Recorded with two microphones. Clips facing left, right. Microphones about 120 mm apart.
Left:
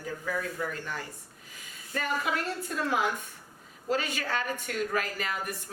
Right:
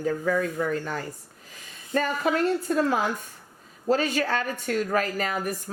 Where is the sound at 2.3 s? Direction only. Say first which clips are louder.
Right 9 dB; 35° right (ahead or behind).